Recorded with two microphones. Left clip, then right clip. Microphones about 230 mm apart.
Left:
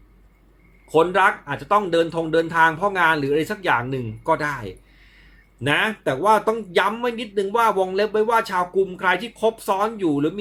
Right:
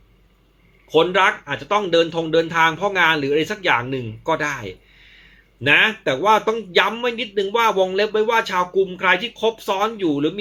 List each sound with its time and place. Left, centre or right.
0.9 s speech: centre